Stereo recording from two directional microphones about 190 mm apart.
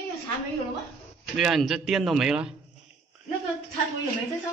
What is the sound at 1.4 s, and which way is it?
Speech, centre (ahead or behind).